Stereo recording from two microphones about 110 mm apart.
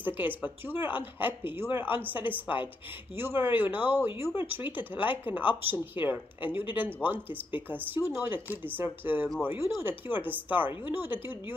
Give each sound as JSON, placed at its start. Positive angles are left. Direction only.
{"t": 0.0, "sound": "speech", "side_deg": -15}